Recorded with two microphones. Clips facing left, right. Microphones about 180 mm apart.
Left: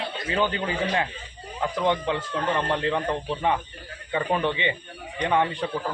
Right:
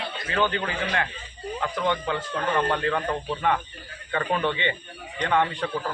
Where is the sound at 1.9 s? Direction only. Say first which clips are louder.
Left 2 dB; 20° left (ahead or behind).